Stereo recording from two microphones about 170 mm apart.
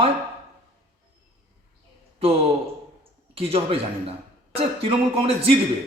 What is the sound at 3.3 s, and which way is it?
A man's voice, 35° right (ahead or behind).